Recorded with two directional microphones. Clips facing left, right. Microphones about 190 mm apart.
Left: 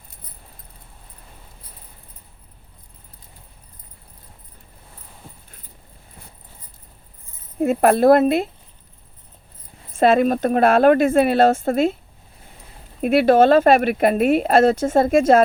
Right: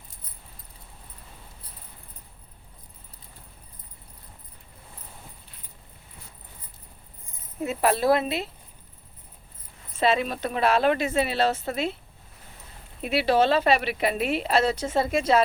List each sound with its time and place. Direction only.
7.6 s speech: 50° left (ahead or behind)
9.9 s speech: 50° left (ahead or behind)
13.0 s speech: 50° left (ahead or behind)